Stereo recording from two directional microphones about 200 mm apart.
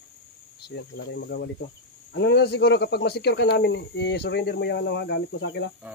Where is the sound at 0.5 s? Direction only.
55° left (ahead or behind).